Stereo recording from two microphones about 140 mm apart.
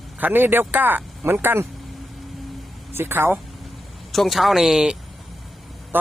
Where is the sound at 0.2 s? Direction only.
15° right (ahead or behind).